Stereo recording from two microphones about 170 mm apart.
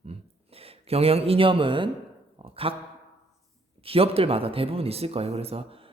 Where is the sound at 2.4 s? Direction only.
35° right (ahead or behind).